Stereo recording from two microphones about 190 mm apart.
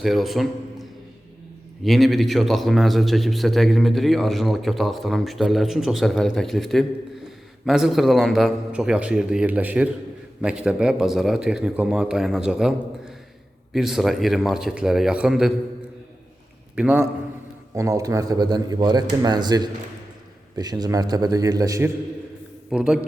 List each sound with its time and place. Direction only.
0.0 s a man's voice: centre (ahead or behind)
16.7 s a man's voice: 10° right (ahead or behind)
22.7 s a man's voice: 5° right (ahead or behind)